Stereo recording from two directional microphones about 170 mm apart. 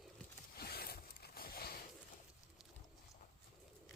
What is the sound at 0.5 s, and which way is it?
Zipper, 65° left (ahead or behind).